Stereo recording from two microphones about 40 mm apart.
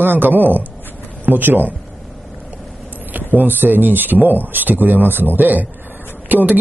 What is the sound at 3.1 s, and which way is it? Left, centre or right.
Speech, right.